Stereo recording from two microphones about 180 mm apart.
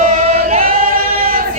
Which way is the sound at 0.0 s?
40° right (ahead or behind).